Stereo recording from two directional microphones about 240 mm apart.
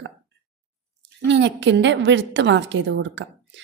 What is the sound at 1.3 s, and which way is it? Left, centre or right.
A woman's voice, right.